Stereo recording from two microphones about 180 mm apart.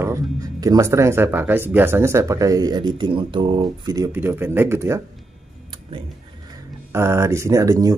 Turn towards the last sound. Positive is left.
turn(degrees=-20)  # may be behind; listen again after turning